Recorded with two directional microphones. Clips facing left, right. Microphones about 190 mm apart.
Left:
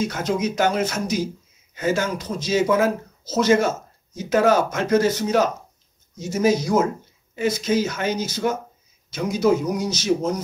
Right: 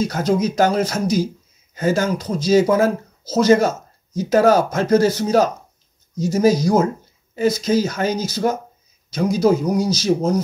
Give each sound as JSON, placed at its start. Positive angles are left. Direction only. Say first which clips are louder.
{"t": 0.1, "sound": "speech", "louder": "right 4 dB", "side_deg": -35}